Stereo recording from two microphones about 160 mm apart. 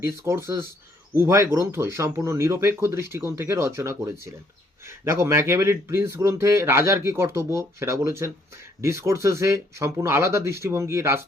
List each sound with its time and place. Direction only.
0.0 s speech: 15° right (ahead or behind)